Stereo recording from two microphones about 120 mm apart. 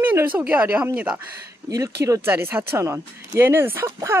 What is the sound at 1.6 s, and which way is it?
Speech, 30° right (ahead or behind).